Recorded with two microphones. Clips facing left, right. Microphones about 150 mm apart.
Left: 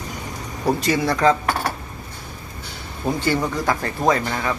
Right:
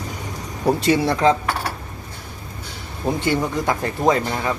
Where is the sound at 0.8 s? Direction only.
30° right (ahead or behind).